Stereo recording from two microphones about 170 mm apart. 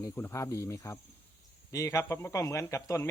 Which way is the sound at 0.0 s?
15° left (ahead or behind).